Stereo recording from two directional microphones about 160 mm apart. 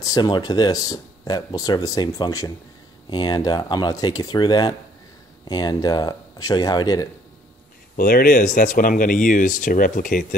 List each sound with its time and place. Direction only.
0.0 s speech: 25° left (ahead or behind)
7.9 s speech: 65° left (ahead or behind)